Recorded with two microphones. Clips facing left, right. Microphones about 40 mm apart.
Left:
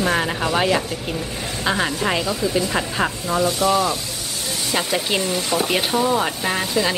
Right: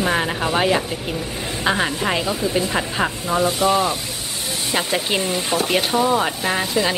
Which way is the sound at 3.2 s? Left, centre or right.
Right.